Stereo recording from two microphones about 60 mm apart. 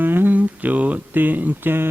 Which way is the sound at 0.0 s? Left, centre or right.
Right.